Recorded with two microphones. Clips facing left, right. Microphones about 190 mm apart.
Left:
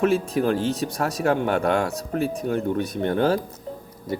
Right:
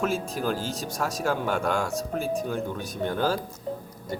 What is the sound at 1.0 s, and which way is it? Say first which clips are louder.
Speech: left 4 dB; 60° left (ahead or behind).